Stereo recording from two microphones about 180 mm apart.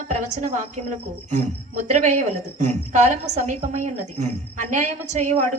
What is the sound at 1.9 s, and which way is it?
Speech, 40° right (ahead or behind).